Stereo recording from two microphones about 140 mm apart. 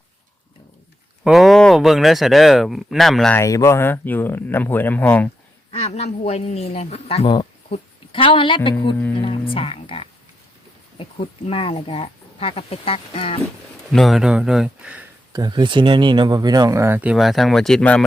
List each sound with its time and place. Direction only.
1.2 s speech: centre (ahead or behind)
3.3 s speech: 20° left (ahead or behind)
5.7 s speech: 45° left (ahead or behind)
13.9 s speech: centre (ahead or behind)
15.3 s speech: 30° right (ahead or behind); by 18.0 s 5° left (ahead or behind)